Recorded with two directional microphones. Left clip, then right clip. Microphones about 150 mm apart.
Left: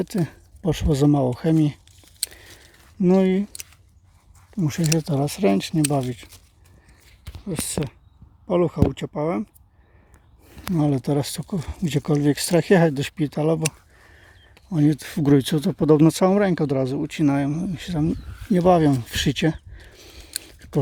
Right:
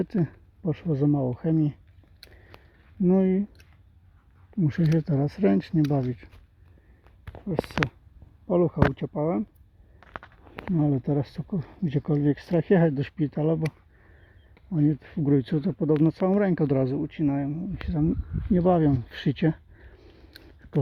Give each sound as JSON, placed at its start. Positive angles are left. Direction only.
{"t": 0.0, "sound": "speech", "side_deg": 10}
{"t": 0.3, "sound": "speech", "side_deg": 25}
{"t": 2.2, "sound": "a sound", "side_deg": 25}
{"t": 3.0, "sound": "speech", "side_deg": 20}
{"t": 4.5, "sound": "speech", "side_deg": 0}
{"t": 7.4, "sound": "speech", "side_deg": 5}
{"t": 10.8, "sound": "speech", "side_deg": 15}
{"t": 14.7, "sound": "speech", "side_deg": 25}
{"t": 15.9, "sound": "speech", "side_deg": 30}
{"t": 16.3, "sound": "speech", "side_deg": 15}
{"t": 17.0, "sound": "speech", "side_deg": 30}
{"t": 17.8, "sound": "speech", "side_deg": 15}
{"t": 18.4, "sound": "a sound", "side_deg": 15}